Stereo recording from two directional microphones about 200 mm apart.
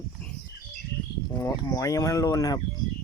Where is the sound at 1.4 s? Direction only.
15° left (ahead or behind).